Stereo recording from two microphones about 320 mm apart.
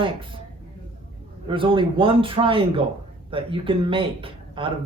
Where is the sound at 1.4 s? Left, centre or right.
Centre.